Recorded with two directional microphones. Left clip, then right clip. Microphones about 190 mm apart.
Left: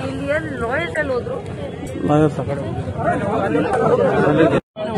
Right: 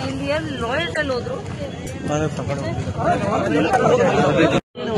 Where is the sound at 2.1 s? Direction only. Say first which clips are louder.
Left 7 dB; 45° left (ahead or behind).